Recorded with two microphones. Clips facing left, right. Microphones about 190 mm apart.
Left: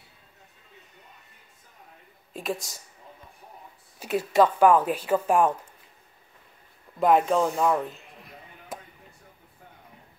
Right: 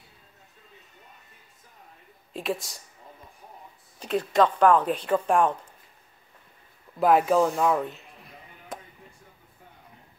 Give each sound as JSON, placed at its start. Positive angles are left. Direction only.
{"t": 2.3, "sound": "speech", "side_deg": 0}
{"t": 4.0, "sound": "speech", "side_deg": 5}
{"t": 7.0, "sound": "speech", "side_deg": -5}
{"t": 8.7, "sound": "a sound", "side_deg": 5}